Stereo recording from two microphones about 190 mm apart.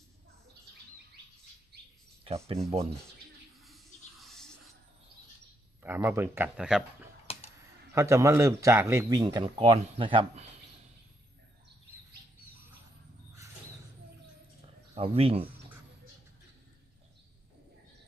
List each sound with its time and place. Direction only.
2.2 s speech: 30° right (ahead or behind)
4.2 s music: centre (ahead or behind)
5.8 s speech: 10° right (ahead or behind)
7.9 s speech: 15° right (ahead or behind)
14.9 s speech: 30° right (ahead or behind)